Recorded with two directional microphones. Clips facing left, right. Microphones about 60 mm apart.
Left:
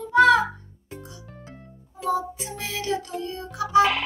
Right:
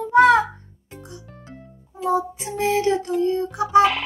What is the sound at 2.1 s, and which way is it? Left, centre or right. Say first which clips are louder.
Music: right 4 dB; right.